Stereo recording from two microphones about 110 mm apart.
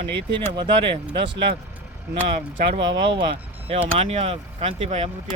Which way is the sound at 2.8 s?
45° right (ahead or behind).